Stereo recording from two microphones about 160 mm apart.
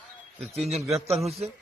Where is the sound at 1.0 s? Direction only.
40° right (ahead or behind).